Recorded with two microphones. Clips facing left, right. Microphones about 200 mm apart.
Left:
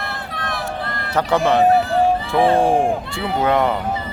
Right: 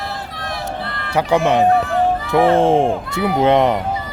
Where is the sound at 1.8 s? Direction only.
30° left (ahead or behind).